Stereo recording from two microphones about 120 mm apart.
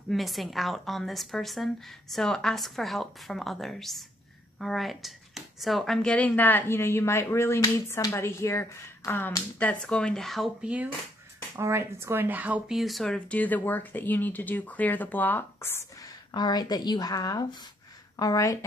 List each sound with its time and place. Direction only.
0.1 s a woman's voice: centre (ahead or behind)
11.5 s speech: 25° right (ahead or behind); by 15.8 s 20° left (ahead or behind)
16.3 s speech: 35° left (ahead or behind)